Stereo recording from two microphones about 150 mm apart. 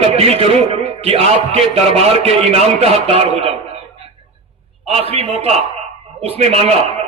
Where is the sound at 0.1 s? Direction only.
45° right (ahead or behind).